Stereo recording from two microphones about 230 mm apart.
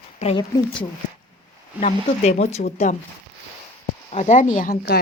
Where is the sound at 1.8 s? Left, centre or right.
Left.